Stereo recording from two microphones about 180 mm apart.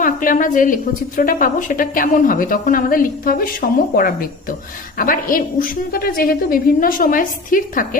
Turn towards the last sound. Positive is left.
turn(degrees=50)  # may be behind; listen again after turning